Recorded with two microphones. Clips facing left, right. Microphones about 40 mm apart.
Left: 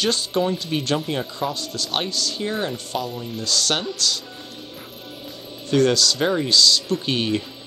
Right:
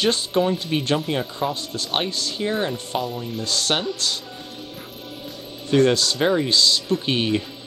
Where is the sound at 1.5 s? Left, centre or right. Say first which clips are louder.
Right 1 dB; right.